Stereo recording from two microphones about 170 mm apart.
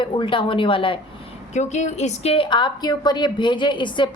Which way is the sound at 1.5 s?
45° left (ahead or behind).